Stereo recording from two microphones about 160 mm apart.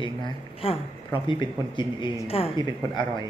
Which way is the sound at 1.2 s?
30° left (ahead or behind).